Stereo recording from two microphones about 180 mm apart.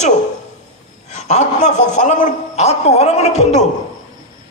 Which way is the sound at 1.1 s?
40° left (ahead or behind).